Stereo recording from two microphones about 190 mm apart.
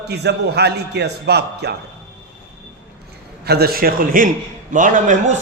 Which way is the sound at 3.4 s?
55° right (ahead or behind).